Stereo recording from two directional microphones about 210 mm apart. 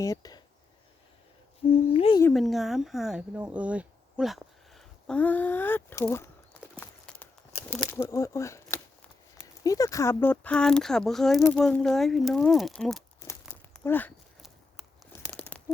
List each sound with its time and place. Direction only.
0.0 s speech: 15° left (ahead or behind)
1.9 s owl: 25° left (ahead or behind)
2.3 s speech: centre (ahead or behind)
3.5 s a sound: 5° right (ahead or behind)
7.7 s speech: 10° left (ahead or behind)
13.4 s crumpling: 5° left (ahead or behind)
15.3 s crumpling: 5° left (ahead or behind)